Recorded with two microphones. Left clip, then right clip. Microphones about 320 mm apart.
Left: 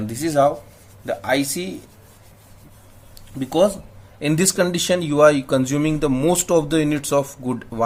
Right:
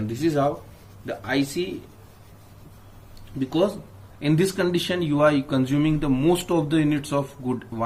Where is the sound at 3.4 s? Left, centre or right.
Left.